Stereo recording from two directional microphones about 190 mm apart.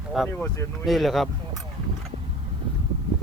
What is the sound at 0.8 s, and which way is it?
Speech, centre (ahead or behind).